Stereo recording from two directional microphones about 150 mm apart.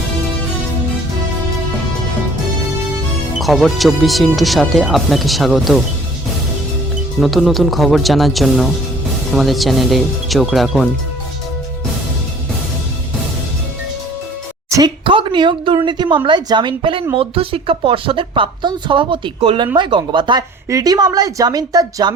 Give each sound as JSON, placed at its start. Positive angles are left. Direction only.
{"t": 3.3, "sound": "speech", "side_deg": 0}
{"t": 7.2, "sound": "speech", "side_deg": 0}
{"t": 14.7, "sound": "a woman's voice", "side_deg": -30}